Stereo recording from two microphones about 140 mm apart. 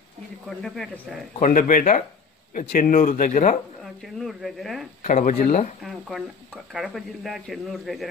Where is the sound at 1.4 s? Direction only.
70° left (ahead or behind).